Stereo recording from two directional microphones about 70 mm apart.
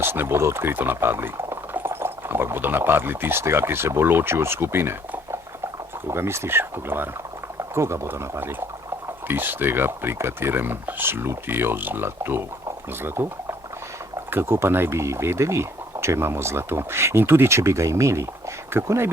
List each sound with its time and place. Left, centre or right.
0.0 s speech: right